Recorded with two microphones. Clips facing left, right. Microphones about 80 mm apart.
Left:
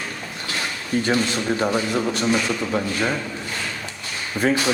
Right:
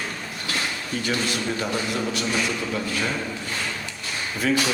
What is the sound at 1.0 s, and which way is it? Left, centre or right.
A man's voice, left.